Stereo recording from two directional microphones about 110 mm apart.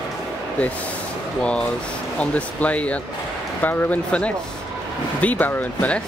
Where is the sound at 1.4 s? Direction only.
10° left (ahead or behind).